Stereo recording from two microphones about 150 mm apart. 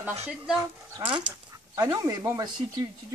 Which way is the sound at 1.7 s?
25° right (ahead or behind).